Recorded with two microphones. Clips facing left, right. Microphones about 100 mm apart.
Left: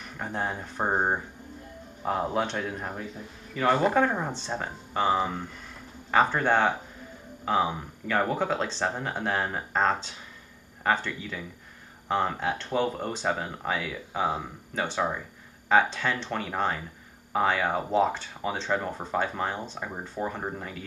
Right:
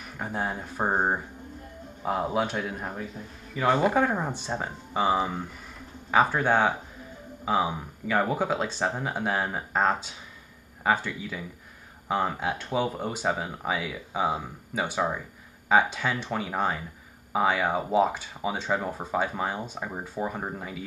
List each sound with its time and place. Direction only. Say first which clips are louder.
0.2 s speech: right 1 dB; 5° right (ahead or behind)